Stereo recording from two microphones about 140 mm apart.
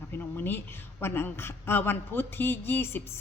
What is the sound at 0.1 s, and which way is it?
A woman's voice, 15° left (ahead or behind).